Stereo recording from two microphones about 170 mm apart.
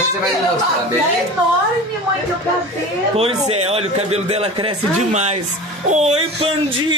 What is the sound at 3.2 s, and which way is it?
Speech, 35° right (ahead or behind).